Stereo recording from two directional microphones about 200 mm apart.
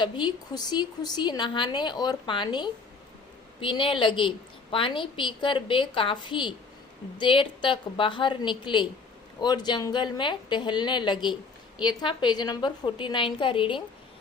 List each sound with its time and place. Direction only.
0.0 s a woman's voice: 20° left (ahead or behind)